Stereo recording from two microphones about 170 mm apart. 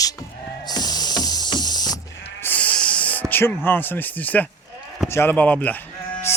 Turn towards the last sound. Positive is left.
turn(degrees=10)  # may be behind; listen again after turning